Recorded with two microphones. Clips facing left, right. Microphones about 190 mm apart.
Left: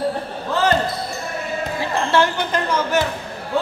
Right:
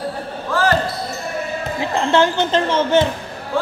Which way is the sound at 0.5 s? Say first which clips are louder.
Right 1 dB; 20° left (ahead or behind).